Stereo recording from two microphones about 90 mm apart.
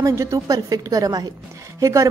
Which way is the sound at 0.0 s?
35° right (ahead or behind).